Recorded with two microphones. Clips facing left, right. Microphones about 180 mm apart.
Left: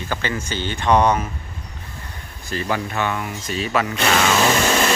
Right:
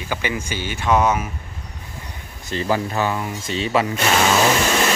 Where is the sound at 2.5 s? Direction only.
30° right (ahead or behind).